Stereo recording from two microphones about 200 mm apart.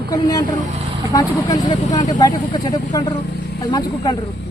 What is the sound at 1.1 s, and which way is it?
Speech, 20° left (ahead or behind).